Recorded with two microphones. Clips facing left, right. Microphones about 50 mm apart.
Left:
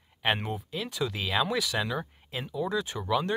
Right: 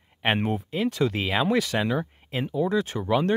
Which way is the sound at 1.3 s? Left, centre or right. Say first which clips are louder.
Right 4 dB; right.